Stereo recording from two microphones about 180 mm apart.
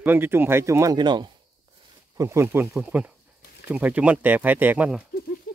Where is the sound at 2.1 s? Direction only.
15° right (ahead or behind).